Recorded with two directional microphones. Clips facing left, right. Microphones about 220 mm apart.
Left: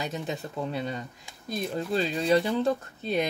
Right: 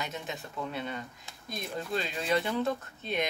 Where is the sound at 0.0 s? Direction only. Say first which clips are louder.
Left 6 dB; 35° left (ahead or behind).